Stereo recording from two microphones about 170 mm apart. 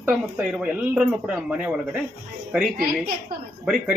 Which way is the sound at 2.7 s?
60° right (ahead or behind).